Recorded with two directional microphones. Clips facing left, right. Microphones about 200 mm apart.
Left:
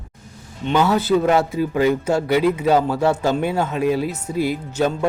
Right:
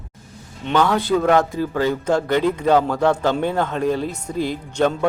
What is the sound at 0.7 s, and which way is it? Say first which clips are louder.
A man's voice: left 1 dB; 5° left (ahead or behind).